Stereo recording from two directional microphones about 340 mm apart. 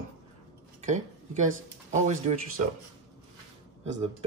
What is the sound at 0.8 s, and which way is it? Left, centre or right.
Dishes, right.